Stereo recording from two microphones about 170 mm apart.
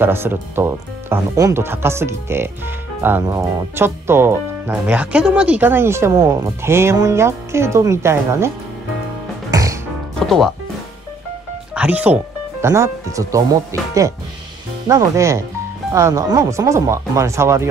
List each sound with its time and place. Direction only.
0.0 s speech: 15° right (ahead or behind)
9.5 s music: 20° right (ahead or behind)
10.2 s speech: centre (ahead or behind)
11.7 s speech: 10° right (ahead or behind)